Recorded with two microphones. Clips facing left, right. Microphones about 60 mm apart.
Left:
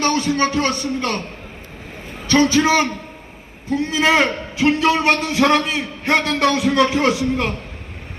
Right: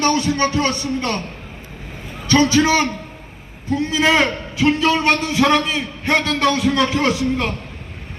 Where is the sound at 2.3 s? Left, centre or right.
Left.